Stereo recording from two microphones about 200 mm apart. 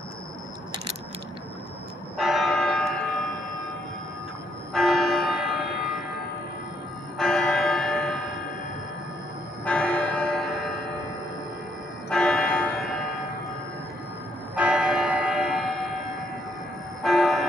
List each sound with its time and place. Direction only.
2.1 s church bell: centre (ahead or behind)
4.7 s church bell: centre (ahead or behind)
7.2 s church bell: 5° left (ahead or behind)
9.7 s church bell: 5° left (ahead or behind)
12.1 s bell: 5° left (ahead or behind)
14.5 s church bell: 5° right (ahead or behind)
17.0 s a sound: centre (ahead or behind)